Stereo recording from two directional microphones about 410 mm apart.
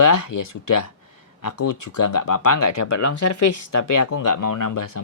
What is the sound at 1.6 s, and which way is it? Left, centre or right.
Speech, left.